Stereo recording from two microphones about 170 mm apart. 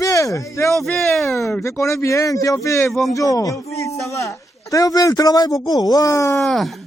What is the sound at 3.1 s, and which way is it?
A man's voice, 20° left (ahead or behind).